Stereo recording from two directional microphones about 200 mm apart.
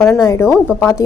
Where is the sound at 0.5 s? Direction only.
5° right (ahead or behind).